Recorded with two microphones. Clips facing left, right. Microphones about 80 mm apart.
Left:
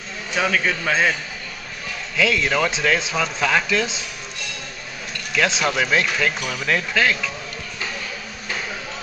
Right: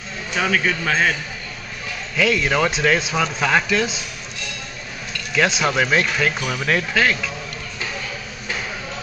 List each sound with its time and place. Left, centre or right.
0.4 s a man's voice: centre
2.1 s speech: centre
5.6 s speech: centre